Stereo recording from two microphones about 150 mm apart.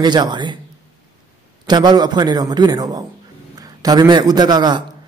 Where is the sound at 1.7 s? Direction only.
30° right (ahead or behind).